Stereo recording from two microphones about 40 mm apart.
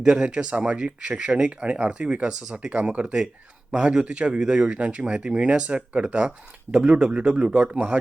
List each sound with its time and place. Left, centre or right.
0.0 s speech: right